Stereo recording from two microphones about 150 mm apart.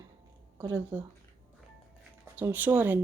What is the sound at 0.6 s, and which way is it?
Speech, 20° right (ahead or behind).